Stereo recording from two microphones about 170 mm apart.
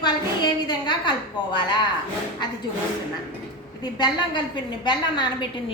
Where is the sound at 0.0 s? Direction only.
25° left (ahead or behind).